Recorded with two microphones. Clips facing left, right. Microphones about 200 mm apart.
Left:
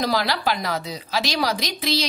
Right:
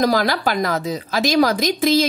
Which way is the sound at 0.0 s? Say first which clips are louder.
Right 5 dB; 45° right (ahead or behind).